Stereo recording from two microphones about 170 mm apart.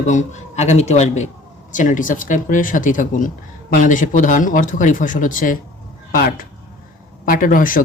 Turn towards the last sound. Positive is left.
turn(degrees=55)  # may be behind; listen again after turning